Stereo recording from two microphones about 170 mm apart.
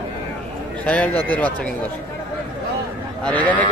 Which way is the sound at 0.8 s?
5° left (ahead or behind).